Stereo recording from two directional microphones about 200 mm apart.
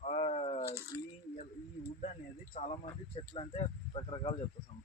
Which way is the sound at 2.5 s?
35° left (ahead or behind).